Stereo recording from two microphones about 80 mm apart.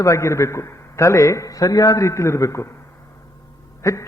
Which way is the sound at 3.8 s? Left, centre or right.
Left.